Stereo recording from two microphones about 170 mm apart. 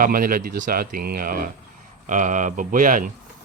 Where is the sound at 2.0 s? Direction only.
50° right (ahead or behind).